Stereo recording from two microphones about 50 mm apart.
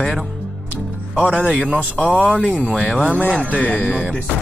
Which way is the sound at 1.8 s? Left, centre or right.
Left.